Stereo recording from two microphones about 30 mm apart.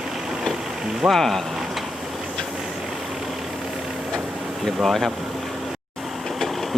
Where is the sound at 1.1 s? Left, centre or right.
Centre.